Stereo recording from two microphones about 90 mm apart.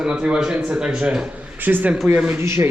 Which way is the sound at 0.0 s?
10° right (ahead or behind).